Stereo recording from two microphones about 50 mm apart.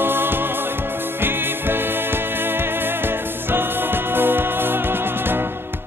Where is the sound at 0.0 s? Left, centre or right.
Right.